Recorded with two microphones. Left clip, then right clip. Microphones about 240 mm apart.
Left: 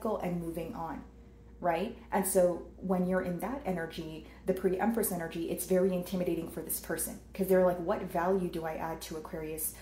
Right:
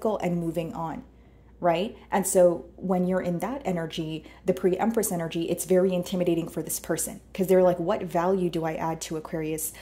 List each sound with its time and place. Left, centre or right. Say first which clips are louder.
0.0 s speech: right 7 dB; right